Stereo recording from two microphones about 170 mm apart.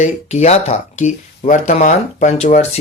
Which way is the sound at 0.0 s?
40° left (ahead or behind).